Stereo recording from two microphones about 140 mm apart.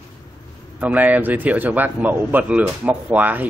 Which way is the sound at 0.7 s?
10° right (ahead or behind).